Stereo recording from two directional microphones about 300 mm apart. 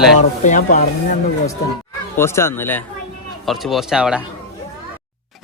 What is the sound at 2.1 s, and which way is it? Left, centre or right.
Speech, centre.